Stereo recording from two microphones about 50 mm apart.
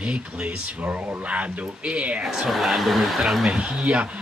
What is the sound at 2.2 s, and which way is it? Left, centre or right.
Speech, centre.